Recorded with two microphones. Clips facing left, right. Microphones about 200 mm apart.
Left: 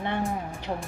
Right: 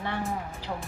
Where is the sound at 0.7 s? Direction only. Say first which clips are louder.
Left 3 dB; 30° left (ahead or behind).